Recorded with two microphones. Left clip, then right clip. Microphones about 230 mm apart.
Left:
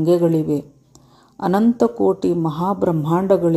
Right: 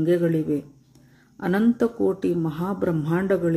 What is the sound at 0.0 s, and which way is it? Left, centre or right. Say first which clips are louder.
Speech: left 5 dB; centre.